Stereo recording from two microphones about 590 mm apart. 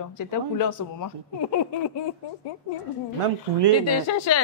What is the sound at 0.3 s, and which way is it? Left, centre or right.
A woman's voice, left.